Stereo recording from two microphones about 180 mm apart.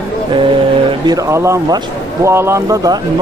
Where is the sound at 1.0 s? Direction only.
20° right (ahead or behind).